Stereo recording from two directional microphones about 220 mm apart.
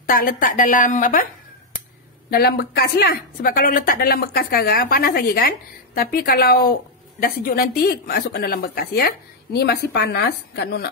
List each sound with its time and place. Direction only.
0.1 s a woman's voice: 40° left (ahead or behind)
2.3 s speech: 45° left (ahead or behind)